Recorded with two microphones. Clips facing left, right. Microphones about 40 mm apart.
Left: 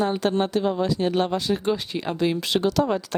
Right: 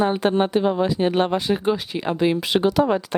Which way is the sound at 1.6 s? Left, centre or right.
Centre.